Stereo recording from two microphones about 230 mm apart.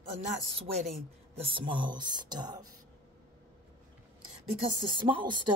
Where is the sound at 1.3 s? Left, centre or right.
Right.